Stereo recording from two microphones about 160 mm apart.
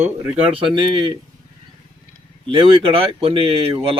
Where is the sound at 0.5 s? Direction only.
30° right (ahead or behind).